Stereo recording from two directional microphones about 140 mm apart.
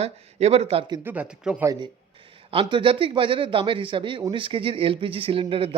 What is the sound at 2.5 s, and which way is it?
A man's voice, 40° right (ahead or behind).